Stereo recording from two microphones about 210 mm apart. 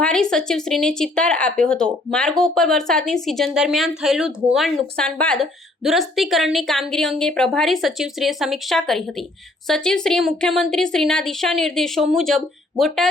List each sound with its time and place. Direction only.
0.0 s speech: 5° left (ahead or behind)